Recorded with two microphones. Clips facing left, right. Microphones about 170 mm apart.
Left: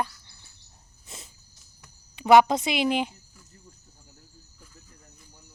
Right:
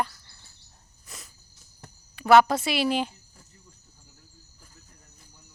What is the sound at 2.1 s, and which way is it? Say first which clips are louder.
Speech: left 1 dB; 20° left (ahead or behind).